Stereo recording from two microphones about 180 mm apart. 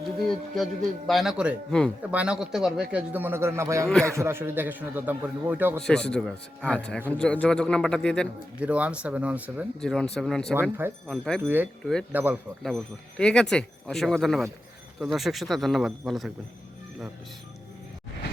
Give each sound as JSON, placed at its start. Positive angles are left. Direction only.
{"t": 0.5, "sound": "a man's voice", "side_deg": 0}
{"t": 5.8, "sound": "speech", "side_deg": 5}
{"t": 8.6, "sound": "a man's voice", "side_deg": -5}
{"t": 9.8, "sound": "speech", "side_deg": 5}
{"t": 10.5, "sound": "a man's voice", "side_deg": -10}
{"t": 11.0, "sound": "speech", "side_deg": 5}
{"t": 11.4, "sound": "a man's voice", "side_deg": -10}
{"t": 12.6, "sound": "speech", "side_deg": 5}